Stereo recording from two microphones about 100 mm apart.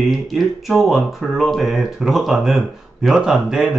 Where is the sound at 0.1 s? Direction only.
Centre (ahead or behind).